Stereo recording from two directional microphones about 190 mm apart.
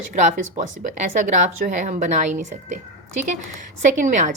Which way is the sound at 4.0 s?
45° right (ahead or behind).